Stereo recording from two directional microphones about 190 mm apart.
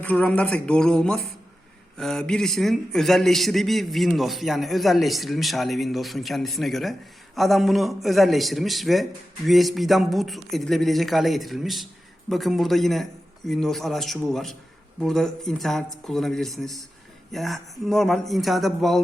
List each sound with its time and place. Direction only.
0.0 s a man's voice: 5° left (ahead or behind)